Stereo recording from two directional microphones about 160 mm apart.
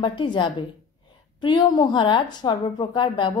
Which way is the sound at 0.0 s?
30° left (ahead or behind).